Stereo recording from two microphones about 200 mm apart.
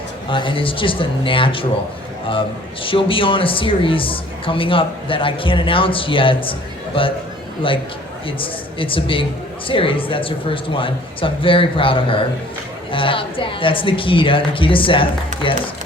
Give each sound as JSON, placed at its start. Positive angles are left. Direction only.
{"t": 0.3, "sound": "a woman's voice", "side_deg": 25}
{"t": 2.8, "sound": "a woman's voice", "side_deg": 25}
{"t": 8.4, "sound": "a woman's voice", "side_deg": 25}